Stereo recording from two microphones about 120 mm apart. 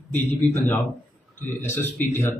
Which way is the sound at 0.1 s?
15° left (ahead or behind).